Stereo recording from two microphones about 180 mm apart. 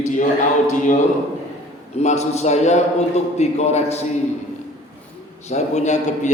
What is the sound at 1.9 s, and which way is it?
A man's voice, 40° left (ahead or behind).